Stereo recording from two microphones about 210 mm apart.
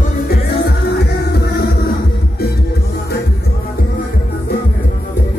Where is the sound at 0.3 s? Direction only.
50° left (ahead or behind).